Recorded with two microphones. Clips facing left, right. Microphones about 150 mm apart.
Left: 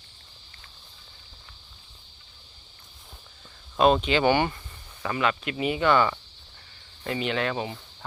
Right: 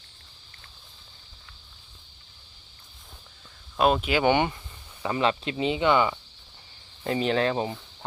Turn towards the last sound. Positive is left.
turn(degrees=-35)  # may be behind; listen again after turning